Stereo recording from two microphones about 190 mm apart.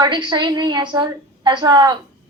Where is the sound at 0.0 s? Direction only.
25° right (ahead or behind).